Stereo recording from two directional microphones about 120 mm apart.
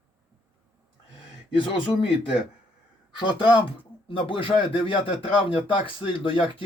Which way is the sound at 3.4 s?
10° right (ahead or behind).